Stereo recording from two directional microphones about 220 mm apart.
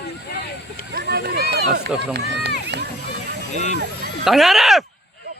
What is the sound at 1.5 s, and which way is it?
Run, 45° right (ahead or behind).